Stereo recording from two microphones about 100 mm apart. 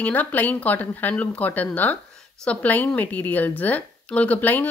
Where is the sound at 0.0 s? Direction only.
15° left (ahead or behind).